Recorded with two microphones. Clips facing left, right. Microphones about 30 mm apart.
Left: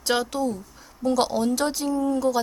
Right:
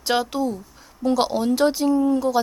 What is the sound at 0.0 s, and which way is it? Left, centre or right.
Speech, centre.